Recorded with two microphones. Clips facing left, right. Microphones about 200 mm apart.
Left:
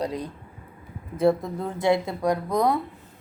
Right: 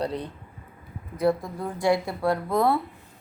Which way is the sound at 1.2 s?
25° left (ahead or behind).